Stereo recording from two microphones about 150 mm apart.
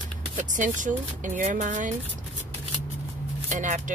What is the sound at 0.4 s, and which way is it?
Speech, 55° right (ahead or behind).